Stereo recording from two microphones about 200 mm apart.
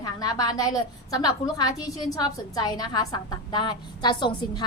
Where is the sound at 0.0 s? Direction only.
20° left (ahead or behind).